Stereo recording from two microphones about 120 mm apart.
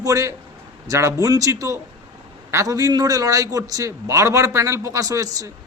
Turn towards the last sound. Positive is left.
turn(degrees=-30)  # may be behind; listen again after turning